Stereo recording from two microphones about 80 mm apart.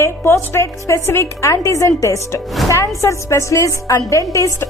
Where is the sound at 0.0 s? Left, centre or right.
Left.